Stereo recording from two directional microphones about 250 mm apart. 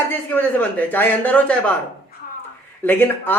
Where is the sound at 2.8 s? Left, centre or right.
Centre.